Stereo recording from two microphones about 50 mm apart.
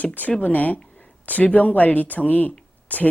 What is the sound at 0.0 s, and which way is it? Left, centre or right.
Speech, left.